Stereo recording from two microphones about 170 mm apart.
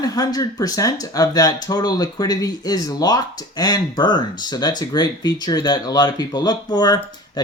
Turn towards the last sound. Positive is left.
turn(degrees=25)  # may be behind; listen again after turning